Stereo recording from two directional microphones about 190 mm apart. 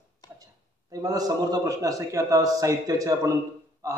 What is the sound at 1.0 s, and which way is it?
A man's voice, 20° right (ahead or behind).